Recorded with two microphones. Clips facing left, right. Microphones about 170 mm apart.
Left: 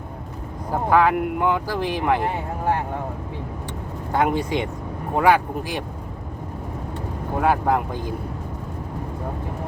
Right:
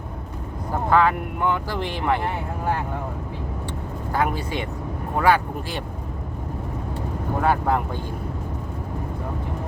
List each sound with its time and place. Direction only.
0.7 s speech: 10° left (ahead or behind)
4.1 s speech: 20° left (ahead or behind)
7.4 s speech: 10° left (ahead or behind)